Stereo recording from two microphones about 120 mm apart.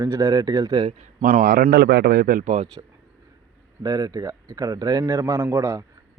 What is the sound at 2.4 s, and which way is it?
Speech, 75° right (ahead or behind).